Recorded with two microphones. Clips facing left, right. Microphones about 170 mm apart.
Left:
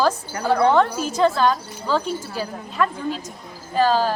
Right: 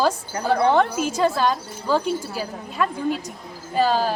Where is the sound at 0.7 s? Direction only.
10° right (ahead or behind).